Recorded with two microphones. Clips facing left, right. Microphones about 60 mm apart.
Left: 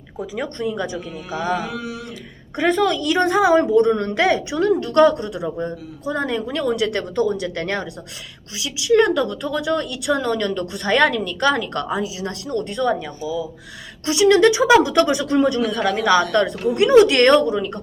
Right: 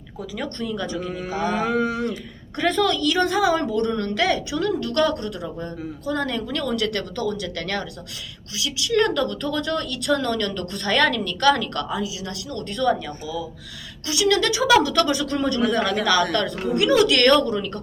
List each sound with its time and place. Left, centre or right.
0.2 s a woman's voice: centre
1.0 s mantra: right
2.6 s a woman's voice: centre
12.5 s a woman's voice: left